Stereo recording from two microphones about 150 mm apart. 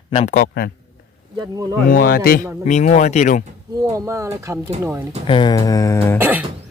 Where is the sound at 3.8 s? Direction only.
20° right (ahead or behind).